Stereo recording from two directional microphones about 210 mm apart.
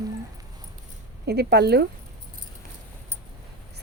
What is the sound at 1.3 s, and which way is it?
Speech, 50° right (ahead or behind).